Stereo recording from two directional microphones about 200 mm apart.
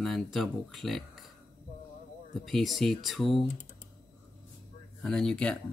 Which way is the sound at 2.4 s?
Centre (ahead or behind).